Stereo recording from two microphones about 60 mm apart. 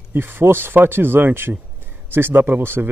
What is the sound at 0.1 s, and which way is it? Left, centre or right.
Speech, right.